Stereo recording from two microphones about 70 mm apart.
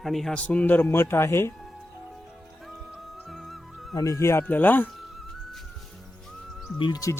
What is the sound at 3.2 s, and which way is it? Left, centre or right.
Music, centre.